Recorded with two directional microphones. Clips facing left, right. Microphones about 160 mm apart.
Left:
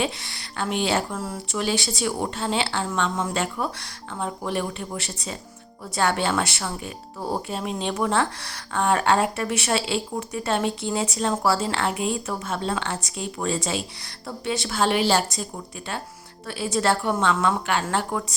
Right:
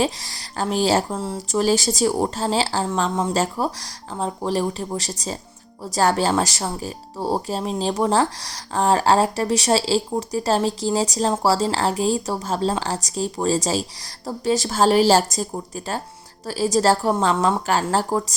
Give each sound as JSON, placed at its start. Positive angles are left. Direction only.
{"t": 0.0, "sound": "speech", "side_deg": -40}